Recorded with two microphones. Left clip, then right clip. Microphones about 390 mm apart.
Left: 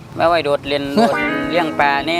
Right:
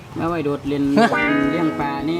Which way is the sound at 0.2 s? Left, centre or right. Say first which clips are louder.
Left 8 dB; left.